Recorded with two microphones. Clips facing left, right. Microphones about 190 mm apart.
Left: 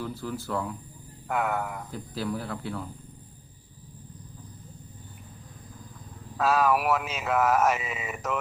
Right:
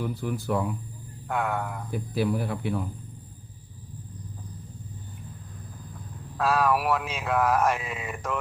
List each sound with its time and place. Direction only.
0.0 s speech: 15° right (ahead or behind)
1.3 s speech: 5° left (ahead or behind)
1.9 s speech: 15° right (ahead or behind)
6.3 s speech: centre (ahead or behind)